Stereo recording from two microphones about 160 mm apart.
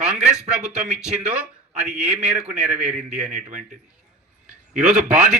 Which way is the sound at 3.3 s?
55° right (ahead or behind).